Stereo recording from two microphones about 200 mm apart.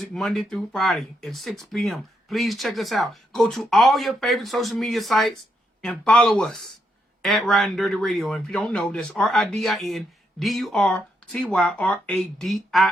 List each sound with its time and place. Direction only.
0.0 s speech: centre (ahead or behind)